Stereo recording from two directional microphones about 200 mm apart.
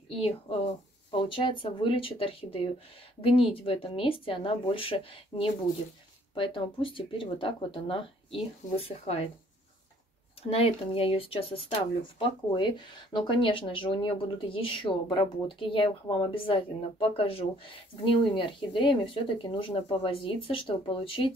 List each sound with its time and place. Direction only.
0.1 s speech: 30° left (ahead or behind)
10.5 s speech: 25° left (ahead or behind)